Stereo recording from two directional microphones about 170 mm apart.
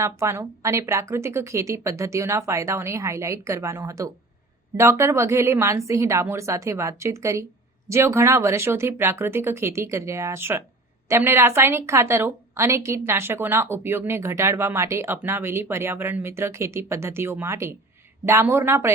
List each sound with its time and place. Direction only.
0.0 s a woman's voice: 15° right (ahead or behind)